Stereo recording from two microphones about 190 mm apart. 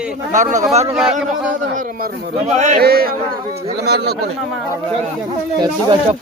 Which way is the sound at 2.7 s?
55° right (ahead or behind).